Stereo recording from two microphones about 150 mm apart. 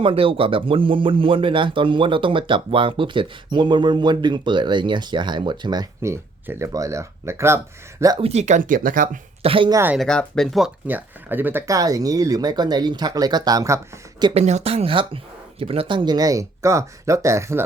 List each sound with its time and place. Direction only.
0.0 s speech: 35° right (ahead or behind); by 7.6 s 15° right (ahead or behind)
8.2 s speech: 45° right (ahead or behind); by 9.0 s 65° right (ahead or behind)
9.4 s speech: 35° right (ahead or behind)
9.7 s speech: 15° right (ahead or behind)
10.0 s speech: 5° left (ahead or behind)
10.8 s speech: 10° right (ahead or behind)
14.3 s speech: 45° right (ahead or behind); by 17.6 s 20° right (ahead or behind)